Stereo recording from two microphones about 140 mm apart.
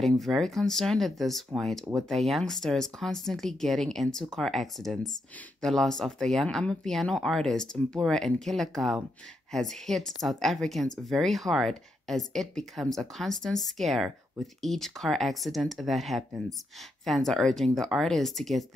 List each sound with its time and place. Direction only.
0.2 s speech: centre (ahead or behind)